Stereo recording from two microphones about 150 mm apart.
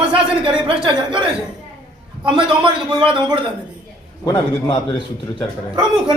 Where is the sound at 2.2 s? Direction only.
35° right (ahead or behind).